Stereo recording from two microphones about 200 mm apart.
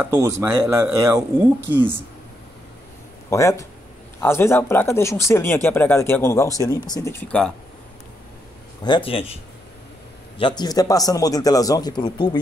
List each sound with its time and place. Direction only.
0.1 s speech: 15° right (ahead or behind)
3.3 s speech: 15° left (ahead or behind)
8.8 s speech: 25° left (ahead or behind)
10.4 s speech: 20° left (ahead or behind)